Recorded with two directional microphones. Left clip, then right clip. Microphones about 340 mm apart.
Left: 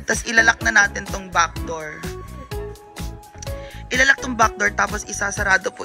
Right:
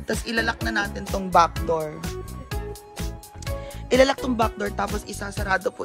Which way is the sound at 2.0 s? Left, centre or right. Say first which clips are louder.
Left 2 dB; centre.